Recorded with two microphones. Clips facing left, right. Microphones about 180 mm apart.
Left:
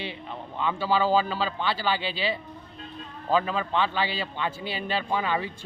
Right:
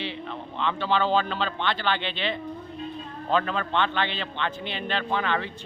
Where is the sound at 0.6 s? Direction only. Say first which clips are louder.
Even; 10° left (ahead or behind).